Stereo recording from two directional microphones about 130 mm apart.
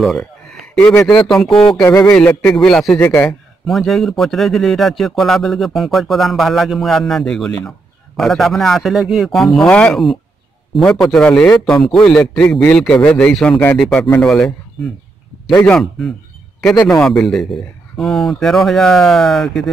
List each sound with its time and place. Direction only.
0.0 s a sound: centre (ahead or behind)
1.3 s a man's voice: 5° left (ahead or behind)
1.8 s speech: 20° left (ahead or behind)
2.1 s a man's voice: 10° left (ahead or behind)
3.0 s speech: 15° left (ahead or behind)
3.3 s a man's voice: centre (ahead or behind)